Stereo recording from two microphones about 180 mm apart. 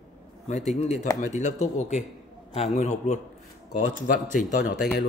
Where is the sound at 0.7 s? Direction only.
40° left (ahead or behind).